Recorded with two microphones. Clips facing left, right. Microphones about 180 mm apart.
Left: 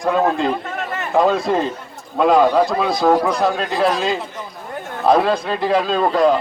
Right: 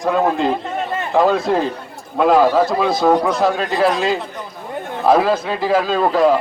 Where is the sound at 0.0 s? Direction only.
Centre (ahead or behind).